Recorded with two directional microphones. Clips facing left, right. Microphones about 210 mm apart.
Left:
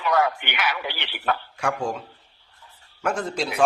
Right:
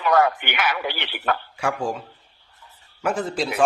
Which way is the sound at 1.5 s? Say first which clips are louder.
Right 1 dB; 5° right (ahead or behind).